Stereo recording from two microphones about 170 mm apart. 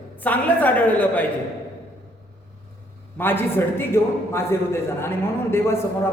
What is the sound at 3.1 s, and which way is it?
A man's voice, 10° left (ahead or behind).